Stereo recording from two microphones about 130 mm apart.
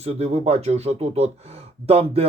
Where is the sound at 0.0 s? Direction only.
55° right (ahead or behind).